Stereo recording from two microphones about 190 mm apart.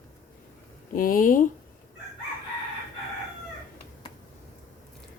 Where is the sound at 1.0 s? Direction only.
45° left (ahead or behind).